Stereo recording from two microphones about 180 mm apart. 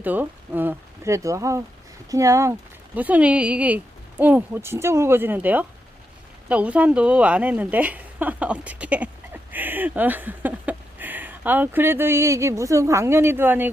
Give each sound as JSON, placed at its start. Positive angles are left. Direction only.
{"t": 0.0, "sound": "a woman's voice", "side_deg": -10}